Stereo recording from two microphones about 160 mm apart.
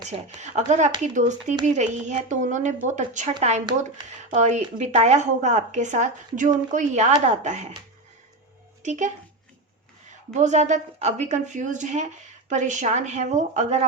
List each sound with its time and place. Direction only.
0.3 s a woman's voice: 45° right (ahead or behind)
4.4 s a woman's voice: 45° right (ahead or behind)
8.8 s speech: 45° right (ahead or behind)
10.3 s a woman's voice: 45° right (ahead or behind)